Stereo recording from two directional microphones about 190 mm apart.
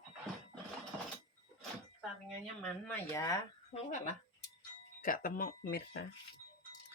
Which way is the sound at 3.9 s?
45° left (ahead or behind).